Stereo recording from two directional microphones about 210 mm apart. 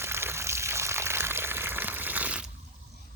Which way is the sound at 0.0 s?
10° right (ahead or behind).